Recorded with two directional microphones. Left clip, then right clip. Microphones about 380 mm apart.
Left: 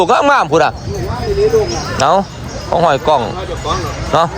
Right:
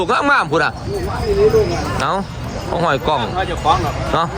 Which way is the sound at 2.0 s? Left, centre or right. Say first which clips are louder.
Left 12 dB; centre.